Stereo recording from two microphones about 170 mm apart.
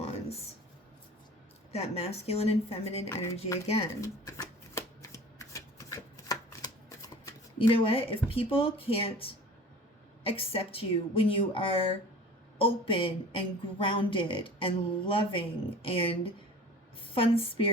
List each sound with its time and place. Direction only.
1.7 s a woman's voice: 35° left (ahead or behind)
4.0 s shuffling cards: 20° left (ahead or behind)
7.7 s a woman's voice: 35° left (ahead or behind)